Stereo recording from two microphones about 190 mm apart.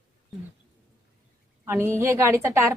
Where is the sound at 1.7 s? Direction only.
15° right (ahead or behind).